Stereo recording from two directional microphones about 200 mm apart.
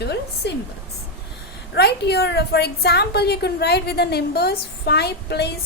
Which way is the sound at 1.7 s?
55° left (ahead or behind).